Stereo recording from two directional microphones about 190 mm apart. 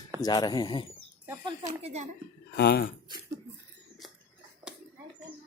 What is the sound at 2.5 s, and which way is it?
Speech, 55° left (ahead or behind).